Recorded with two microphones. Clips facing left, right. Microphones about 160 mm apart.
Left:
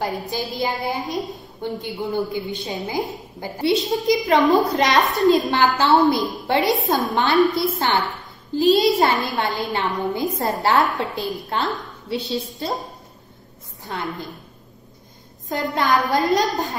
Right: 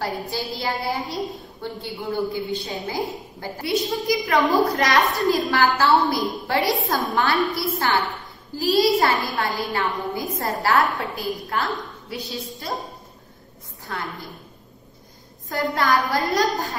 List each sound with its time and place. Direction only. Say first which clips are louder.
0.0 s a woman's voice: left 2 dB; 20° left (ahead or behind)
13.8 s a woman's voice: left 3 dB; 20° left (ahead or behind)
15.4 s a woman's voice: left 1 dB; 20° left (ahead or behind)